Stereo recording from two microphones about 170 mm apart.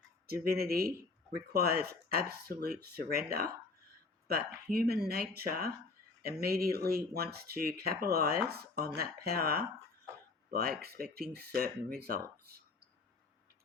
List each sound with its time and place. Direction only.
0.4 s speech: 65° right (ahead or behind)